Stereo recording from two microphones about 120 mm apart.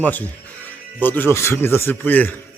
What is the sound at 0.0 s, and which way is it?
Speech, 15° left (ahead or behind).